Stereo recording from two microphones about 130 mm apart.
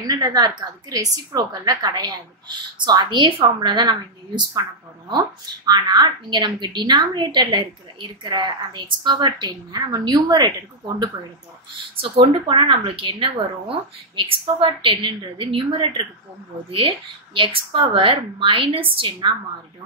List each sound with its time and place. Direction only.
0.0 s a woman's voice: 30° right (ahead or behind)
5.7 s a woman's voice: 35° right (ahead or behind)
12.0 s a woman's voice: 40° right (ahead or behind)
16.7 s speech: 45° right (ahead or behind)